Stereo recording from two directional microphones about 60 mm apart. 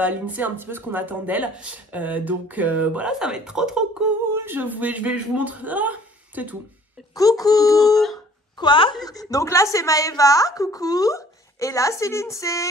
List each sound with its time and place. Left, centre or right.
0.0 s speech: right
3.1 s speech: centre
4.3 s speech: right
7.2 s speech: left
9.0 s a woman's voice: left